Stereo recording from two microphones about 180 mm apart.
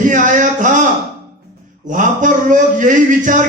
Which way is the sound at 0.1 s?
45° right (ahead or behind).